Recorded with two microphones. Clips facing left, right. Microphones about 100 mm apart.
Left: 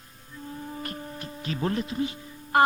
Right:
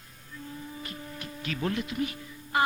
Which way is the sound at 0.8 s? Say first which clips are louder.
Left 4 dB; 40° left (ahead or behind).